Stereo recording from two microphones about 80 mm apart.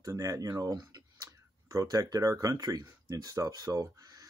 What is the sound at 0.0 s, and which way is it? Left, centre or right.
Speech, right.